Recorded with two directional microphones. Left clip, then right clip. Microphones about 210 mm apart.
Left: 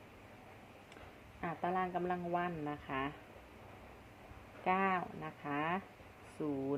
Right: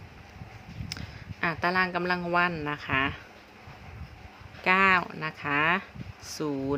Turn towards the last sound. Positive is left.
turn(degrees=-50)  # may be behind; listen again after turning